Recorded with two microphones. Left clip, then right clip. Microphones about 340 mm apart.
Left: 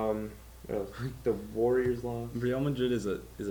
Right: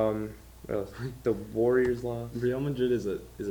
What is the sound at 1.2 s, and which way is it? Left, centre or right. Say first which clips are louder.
Speech: right 2 dB; right.